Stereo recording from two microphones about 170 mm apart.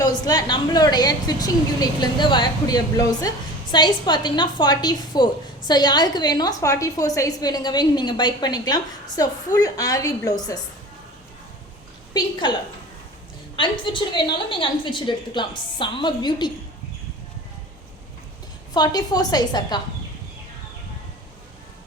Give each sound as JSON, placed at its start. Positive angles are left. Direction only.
{"t": 0.0, "sound": "a woman's voice", "side_deg": 25}
{"t": 12.4, "sound": "a woman's voice", "side_deg": 25}
{"t": 18.7, "sound": "a woman's voice", "side_deg": 25}